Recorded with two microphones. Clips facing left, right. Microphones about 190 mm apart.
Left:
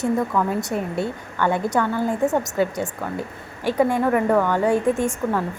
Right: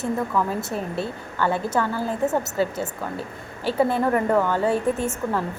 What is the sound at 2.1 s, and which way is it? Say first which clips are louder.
A woman's voice: left 2 dB; 15° left (ahead or behind).